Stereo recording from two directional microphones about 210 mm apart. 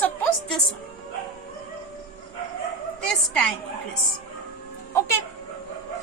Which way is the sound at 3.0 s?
5° left (ahead or behind).